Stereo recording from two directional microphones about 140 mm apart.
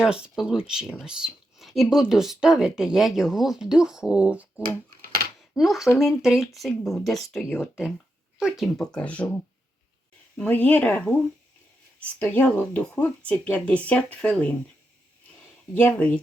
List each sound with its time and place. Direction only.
0.0 s speech: 5° right (ahead or behind)
5.0 s a sound: 90° right
5.4 s cutlery: centre (ahead or behind)
6.0 s speech: centre (ahead or behind)
10.3 s speech: 10° left (ahead or behind)
12.2 s speech: 10° left (ahead or behind)
15.7 s speech: 10° left (ahead or behind)